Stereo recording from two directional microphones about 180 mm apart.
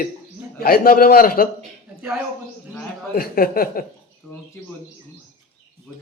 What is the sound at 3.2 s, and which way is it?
Speech, 55° left (ahead or behind).